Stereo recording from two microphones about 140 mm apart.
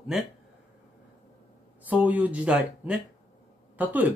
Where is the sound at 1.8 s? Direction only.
10° right (ahead or behind).